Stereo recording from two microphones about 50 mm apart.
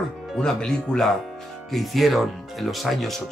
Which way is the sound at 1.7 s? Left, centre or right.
Centre.